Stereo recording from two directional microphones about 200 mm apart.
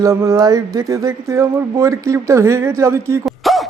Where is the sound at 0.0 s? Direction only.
15° right (ahead or behind).